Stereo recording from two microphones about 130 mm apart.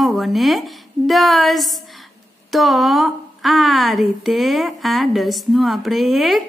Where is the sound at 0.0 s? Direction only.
Centre (ahead or behind).